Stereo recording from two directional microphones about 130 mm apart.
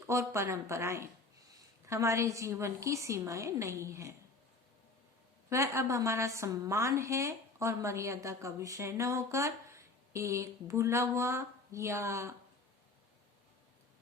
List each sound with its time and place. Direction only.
0.1 s a woman's voice: 20° right (ahead or behind)
5.5 s a woman's voice: 25° right (ahead or behind)